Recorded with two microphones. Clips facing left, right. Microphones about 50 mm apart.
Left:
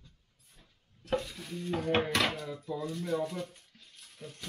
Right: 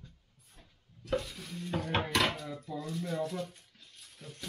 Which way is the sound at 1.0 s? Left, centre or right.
Left.